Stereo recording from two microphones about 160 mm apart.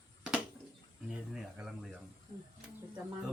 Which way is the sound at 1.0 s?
5° right (ahead or behind).